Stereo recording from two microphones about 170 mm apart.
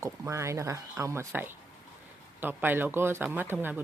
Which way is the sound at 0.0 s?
15° right (ahead or behind).